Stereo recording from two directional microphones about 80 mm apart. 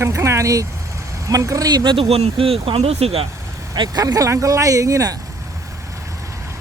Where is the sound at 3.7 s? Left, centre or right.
Right.